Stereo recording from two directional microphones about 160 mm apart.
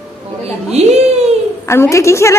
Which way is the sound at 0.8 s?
40° right (ahead or behind).